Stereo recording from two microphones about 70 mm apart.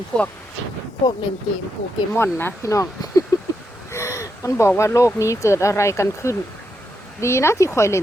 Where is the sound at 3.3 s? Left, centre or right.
Left.